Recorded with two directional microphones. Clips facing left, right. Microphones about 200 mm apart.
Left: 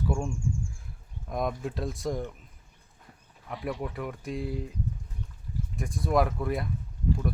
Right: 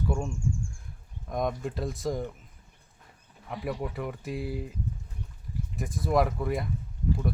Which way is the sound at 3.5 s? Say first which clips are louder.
Even; centre (ahead or behind).